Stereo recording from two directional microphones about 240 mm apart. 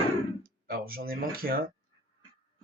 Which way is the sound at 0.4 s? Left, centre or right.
Right.